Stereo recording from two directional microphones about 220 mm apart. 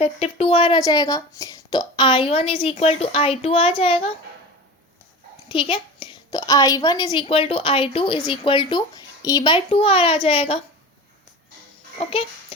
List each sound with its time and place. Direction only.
0.0 s a woman's voice: 25° left (ahead or behind)
5.5 s a woman's voice: 25° left (ahead or behind)
11.9 s a child's voice: 25° left (ahead or behind)